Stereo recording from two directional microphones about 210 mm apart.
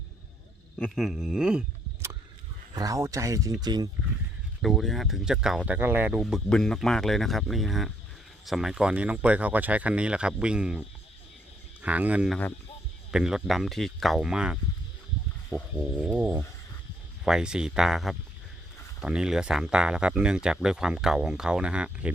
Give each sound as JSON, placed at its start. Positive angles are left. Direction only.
{"t": 0.8, "sound": "speech", "side_deg": 0}
{"t": 4.6, "sound": "speech", "side_deg": 0}
{"t": 15.4, "sound": "speech", "side_deg": 10}
{"t": 16.0, "sound": "speech", "side_deg": -5}